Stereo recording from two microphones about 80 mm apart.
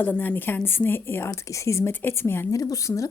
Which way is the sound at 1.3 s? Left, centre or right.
Left.